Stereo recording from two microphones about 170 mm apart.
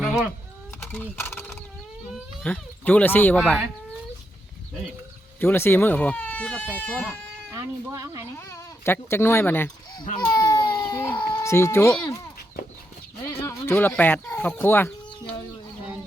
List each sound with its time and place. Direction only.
0.0 s a sound: centre (ahead or behind)
0.8 s a sound: 10° left (ahead or behind)
1.1 s fowl: 15° left (ahead or behind)
2.4 s speech: 10° left (ahead or behind)
5.4 s speech: 10° left (ahead or behind)
7.5 s speech: 20° right (ahead or behind)
8.4 s speech: 15° left (ahead or behind)
10.3 s baby cry: 20° left (ahead or behind)
11.2 s speech: 20° left (ahead or behind)
13.2 s speech: 15° left (ahead or behind)